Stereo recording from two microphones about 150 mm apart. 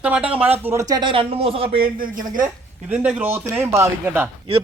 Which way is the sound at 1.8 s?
70° right (ahead or behind).